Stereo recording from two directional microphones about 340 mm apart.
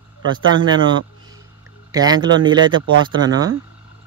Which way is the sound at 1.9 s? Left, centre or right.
Centre.